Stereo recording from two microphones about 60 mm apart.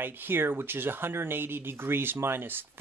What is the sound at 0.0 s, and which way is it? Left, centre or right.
Speech, right.